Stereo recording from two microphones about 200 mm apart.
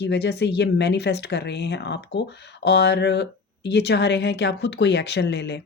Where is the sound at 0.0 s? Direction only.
55° left (ahead or behind).